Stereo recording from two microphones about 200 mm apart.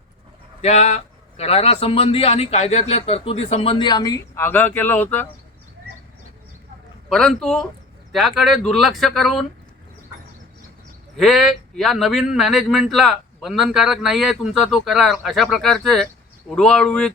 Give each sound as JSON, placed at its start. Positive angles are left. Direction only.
{"t": 0.6, "sound": "a man's voice", "side_deg": 35}
{"t": 7.1, "sound": "speech", "side_deg": 5}
{"t": 11.2, "sound": "speech", "side_deg": 0}